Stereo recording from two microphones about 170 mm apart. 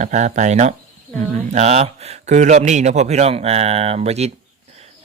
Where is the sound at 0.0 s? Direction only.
45° right (ahead or behind).